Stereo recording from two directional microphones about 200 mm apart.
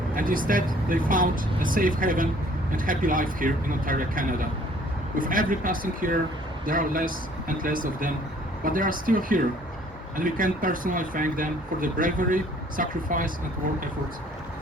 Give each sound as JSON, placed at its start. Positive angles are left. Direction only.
{"t": 0.1, "sound": "speech", "side_deg": -45}